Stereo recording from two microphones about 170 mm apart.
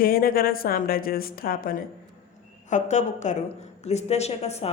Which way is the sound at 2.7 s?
45° left (ahead or behind).